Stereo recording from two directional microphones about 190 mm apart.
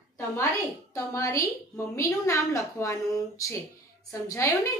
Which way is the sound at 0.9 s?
15° left (ahead or behind).